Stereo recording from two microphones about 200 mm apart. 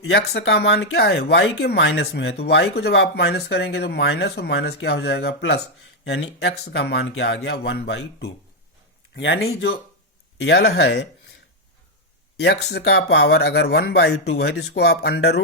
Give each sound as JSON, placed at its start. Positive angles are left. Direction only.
{"t": 0.0, "sound": "speech", "side_deg": 55}
{"t": 12.6, "sound": "speech", "side_deg": 55}